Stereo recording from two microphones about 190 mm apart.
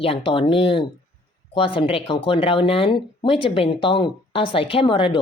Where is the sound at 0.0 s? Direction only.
30° left (ahead or behind).